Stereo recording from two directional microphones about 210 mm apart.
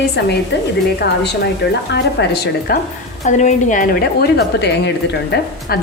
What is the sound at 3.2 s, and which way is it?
A woman's voice, 35° left (ahead or behind).